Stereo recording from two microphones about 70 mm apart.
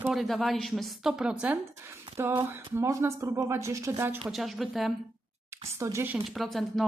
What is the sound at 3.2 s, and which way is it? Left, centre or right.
Speech, right.